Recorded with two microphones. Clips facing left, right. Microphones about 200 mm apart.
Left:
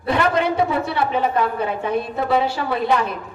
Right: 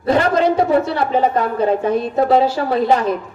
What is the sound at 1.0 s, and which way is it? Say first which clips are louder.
A woman's voice: right 3 dB; 45° right (ahead or behind).